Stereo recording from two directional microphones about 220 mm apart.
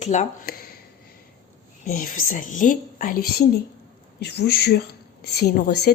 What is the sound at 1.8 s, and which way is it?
A woman's voice, 40° left (ahead or behind).